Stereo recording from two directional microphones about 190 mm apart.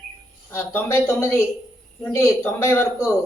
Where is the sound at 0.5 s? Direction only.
10° left (ahead or behind).